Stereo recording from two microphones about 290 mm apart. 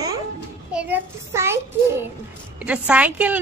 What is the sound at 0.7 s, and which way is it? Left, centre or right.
Child singing, centre.